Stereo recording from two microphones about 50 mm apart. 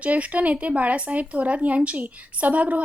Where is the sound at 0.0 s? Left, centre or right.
Right.